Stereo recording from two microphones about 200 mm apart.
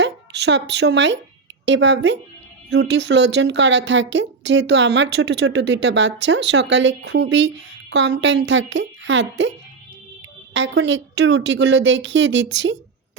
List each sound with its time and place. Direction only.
0.0 s a woman's voice: 60° right (ahead or behind)
10.5 s a woman's voice: 65° right (ahead or behind)